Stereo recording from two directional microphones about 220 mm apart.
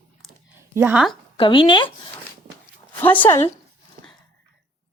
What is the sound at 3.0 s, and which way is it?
Speech, 10° left (ahead or behind).